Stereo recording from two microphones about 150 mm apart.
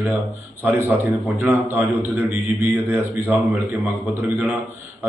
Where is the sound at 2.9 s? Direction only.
10° right (ahead or behind).